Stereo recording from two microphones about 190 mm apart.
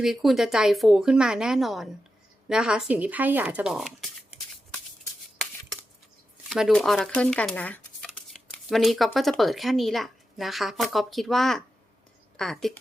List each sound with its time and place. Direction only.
0.0 s speech: centre (ahead or behind)
5.4 s a sound: centre (ahead or behind)
6.5 s speech: centre (ahead or behind)